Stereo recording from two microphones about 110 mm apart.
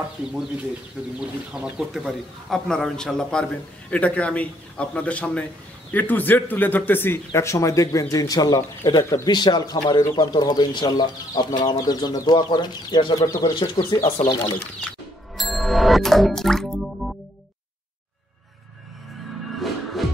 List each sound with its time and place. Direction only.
1.2 s a man's voice: 5° right (ahead or behind); by 13.5 s 30° left (ahead or behind)
14.0 s speech: 70° left (ahead or behind)
14.3 s speech: 35° left (ahead or behind)
15.3 s music: centre (ahead or behind)
19.6 s music: centre (ahead or behind)